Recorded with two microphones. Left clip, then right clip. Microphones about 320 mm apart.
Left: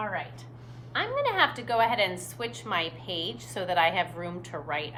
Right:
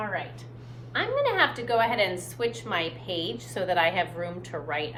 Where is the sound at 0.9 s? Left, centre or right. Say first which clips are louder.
Right 2 dB; centre.